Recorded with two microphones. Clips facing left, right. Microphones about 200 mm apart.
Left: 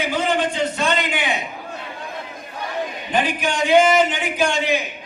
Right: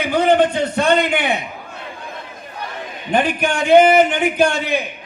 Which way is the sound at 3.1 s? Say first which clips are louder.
Right 5 dB; 55° right (ahead or behind).